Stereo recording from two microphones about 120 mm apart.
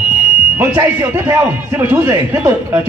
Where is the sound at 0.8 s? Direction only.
20° right (ahead or behind).